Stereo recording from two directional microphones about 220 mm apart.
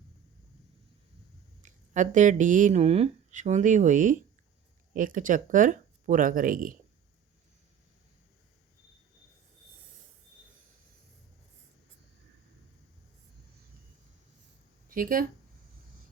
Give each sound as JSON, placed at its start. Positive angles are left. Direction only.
{"t": 1.6, "sound": "speech", "side_deg": -35}
{"t": 14.8, "sound": "speech", "side_deg": -40}